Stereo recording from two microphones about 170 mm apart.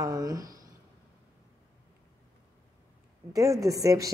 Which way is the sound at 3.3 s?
20° right (ahead or behind).